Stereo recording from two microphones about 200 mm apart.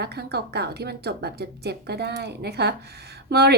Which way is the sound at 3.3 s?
55° right (ahead or behind).